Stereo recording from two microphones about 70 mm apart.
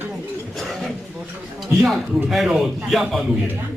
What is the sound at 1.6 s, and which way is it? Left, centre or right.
A man's voice, centre.